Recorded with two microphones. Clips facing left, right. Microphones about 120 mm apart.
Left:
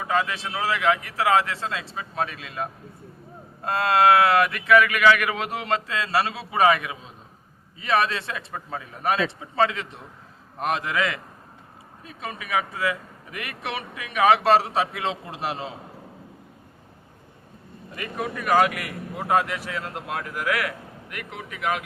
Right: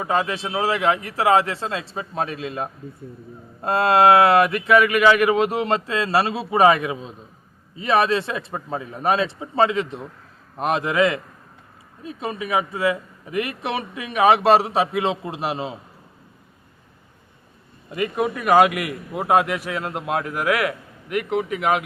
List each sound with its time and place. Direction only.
0.0 s a man's voice: 30° right (ahead or behind); by 15.7 s 15° right (ahead or behind)
17.9 s a man's voice: 20° right (ahead or behind)